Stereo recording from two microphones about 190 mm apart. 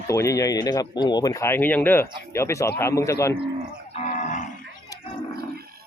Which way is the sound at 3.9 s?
40° left (ahead or behind).